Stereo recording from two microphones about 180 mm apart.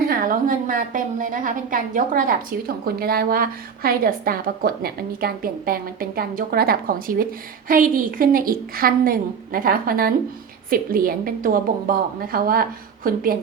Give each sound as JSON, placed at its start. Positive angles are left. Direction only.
{"t": 0.0, "sound": "a woman's voice", "side_deg": -55}